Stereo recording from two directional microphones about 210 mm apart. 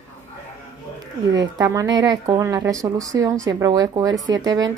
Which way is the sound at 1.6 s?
15° right (ahead or behind).